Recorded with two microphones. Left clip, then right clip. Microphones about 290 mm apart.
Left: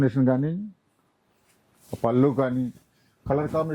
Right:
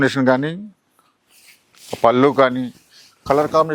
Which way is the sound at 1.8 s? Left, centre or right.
Centre.